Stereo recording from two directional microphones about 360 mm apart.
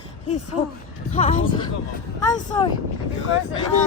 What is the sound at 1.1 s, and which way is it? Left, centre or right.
Speech, centre.